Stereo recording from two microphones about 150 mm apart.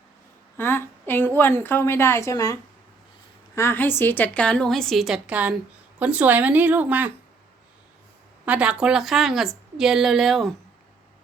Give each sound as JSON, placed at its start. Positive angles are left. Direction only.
{"t": 0.5, "sound": "a sound", "side_deg": 15}
{"t": 1.4, "sound": "a woman's voice", "side_deg": 15}
{"t": 8.4, "sound": "a woman's voice", "side_deg": -10}